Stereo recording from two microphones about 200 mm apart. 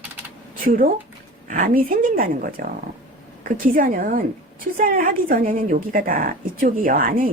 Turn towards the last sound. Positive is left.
turn(degrees=-45)  # may be behind; listen again after turning